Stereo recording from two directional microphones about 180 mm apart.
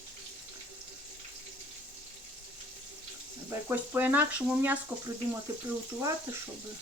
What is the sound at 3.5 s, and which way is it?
Frying, 15° right (ahead or behind).